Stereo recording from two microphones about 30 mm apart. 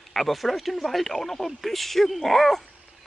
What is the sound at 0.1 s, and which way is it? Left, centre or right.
Speech, centre.